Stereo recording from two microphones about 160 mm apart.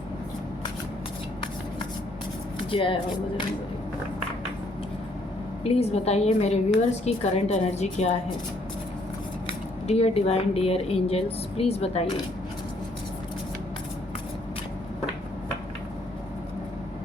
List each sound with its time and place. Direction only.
2.6 s speech: 35° left (ahead or behind)
5.6 s a woman's voice: 40° left (ahead or behind)
9.5 s speech: 40° left (ahead or behind)